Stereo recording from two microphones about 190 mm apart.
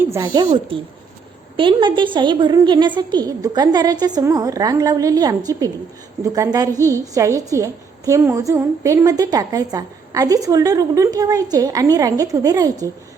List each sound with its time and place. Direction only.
0.0 s a woman's voice: 15° right (ahead or behind)